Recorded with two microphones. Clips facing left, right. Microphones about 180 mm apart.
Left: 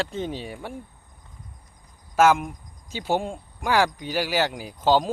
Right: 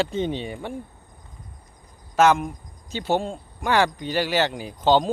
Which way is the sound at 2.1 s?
5° left (ahead or behind).